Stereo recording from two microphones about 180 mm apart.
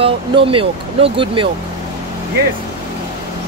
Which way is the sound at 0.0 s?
30° right (ahead or behind).